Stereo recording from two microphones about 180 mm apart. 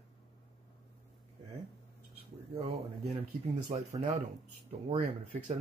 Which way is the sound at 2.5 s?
35° right (ahead or behind).